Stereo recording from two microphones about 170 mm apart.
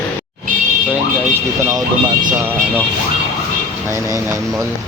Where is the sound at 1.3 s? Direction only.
20° right (ahead or behind).